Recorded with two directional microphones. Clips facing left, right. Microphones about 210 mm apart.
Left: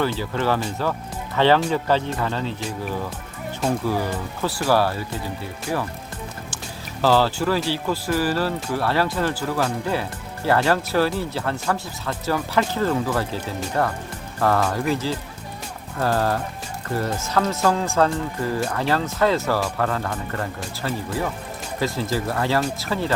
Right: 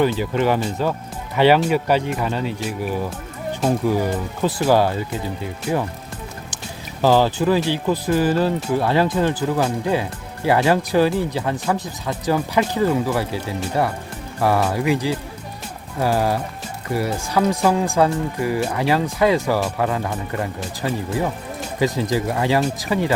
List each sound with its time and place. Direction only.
0.0 s speech: 15° right (ahead or behind)
4.4 s speech: 20° right (ahead or behind)
7.0 s speech: 15° right (ahead or behind)